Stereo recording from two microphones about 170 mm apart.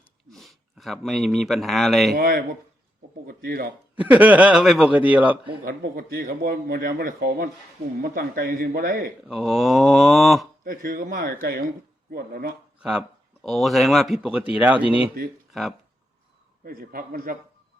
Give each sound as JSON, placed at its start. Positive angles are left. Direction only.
{"t": 0.3, "sound": "speech", "side_deg": 0}
{"t": 2.1, "sound": "a man's voice", "side_deg": -60}
{"t": 3.9, "sound": "a man's voice", "side_deg": -10}
{"t": 5.6, "sound": "a man's voice", "side_deg": -60}
{"t": 9.2, "sound": "speech", "side_deg": 0}
{"t": 10.6, "sound": "a man's voice", "side_deg": -55}
{"t": 12.8, "sound": "speech", "side_deg": -5}
{"t": 16.6, "sound": "a man's voice", "side_deg": -60}